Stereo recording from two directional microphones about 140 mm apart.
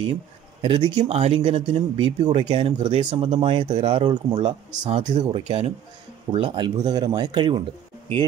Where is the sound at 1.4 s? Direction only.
35° right (ahead or behind).